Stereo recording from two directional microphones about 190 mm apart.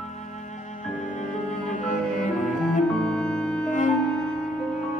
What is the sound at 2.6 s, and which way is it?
Organ, 5° left (ahead or behind).